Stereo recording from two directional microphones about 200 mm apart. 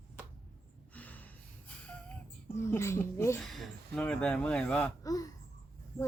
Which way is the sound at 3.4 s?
Centre (ahead or behind).